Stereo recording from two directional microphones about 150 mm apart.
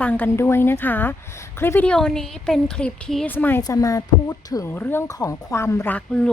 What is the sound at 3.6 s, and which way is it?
Speech, 20° left (ahead or behind).